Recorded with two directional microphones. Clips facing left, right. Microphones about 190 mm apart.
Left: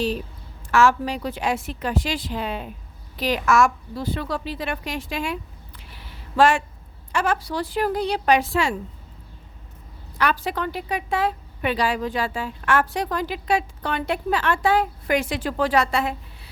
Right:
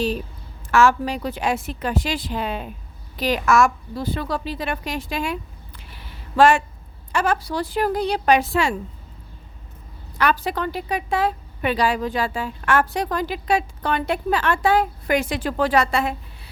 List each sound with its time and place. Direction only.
0.7 s a woman's voice: 45° right (ahead or behind)
10.2 s speech: 50° right (ahead or behind)
10.5 s speech: 35° right (ahead or behind)